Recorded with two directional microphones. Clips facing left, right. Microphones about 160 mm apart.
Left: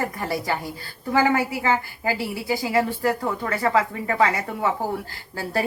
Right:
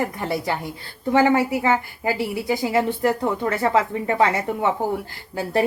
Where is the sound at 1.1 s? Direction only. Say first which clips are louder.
Right 3 dB; 25° right (ahead or behind).